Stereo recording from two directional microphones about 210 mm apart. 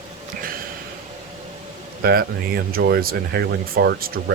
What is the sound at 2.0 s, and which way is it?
Speech, 45° right (ahead or behind).